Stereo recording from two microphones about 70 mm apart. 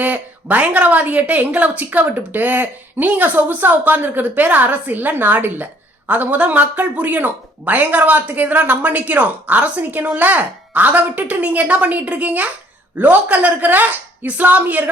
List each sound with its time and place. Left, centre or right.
0.0 s a woman's voice: right